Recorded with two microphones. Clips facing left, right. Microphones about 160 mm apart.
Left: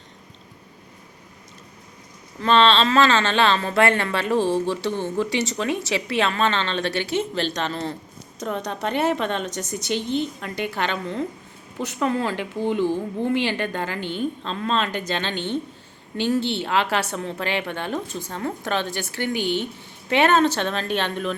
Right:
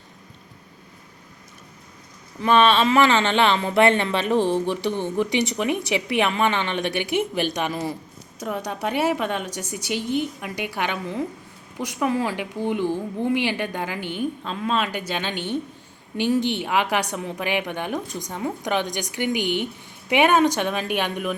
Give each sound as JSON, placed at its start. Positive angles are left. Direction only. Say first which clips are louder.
{"t": 2.4, "sound": "speech", "louder": "even", "side_deg": -10}